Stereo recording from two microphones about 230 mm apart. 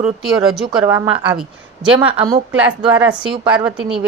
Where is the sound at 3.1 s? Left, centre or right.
Right.